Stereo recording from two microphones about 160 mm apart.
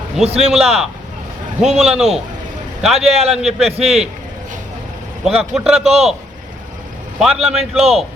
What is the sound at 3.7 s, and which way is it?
Speech, 40° right (ahead or behind).